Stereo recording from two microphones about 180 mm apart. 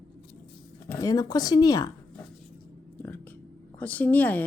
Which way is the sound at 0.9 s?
20° left (ahead or behind).